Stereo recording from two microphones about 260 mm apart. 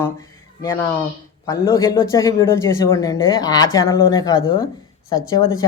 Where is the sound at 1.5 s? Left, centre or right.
Centre.